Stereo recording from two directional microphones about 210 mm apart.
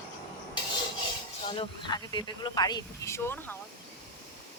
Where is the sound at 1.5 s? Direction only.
25° left (ahead or behind).